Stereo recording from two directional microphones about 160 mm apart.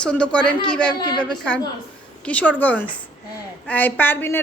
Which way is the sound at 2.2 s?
10° left (ahead or behind).